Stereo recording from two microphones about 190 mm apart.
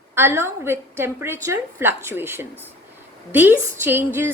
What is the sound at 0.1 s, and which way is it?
A woman's voice, 15° right (ahead or behind).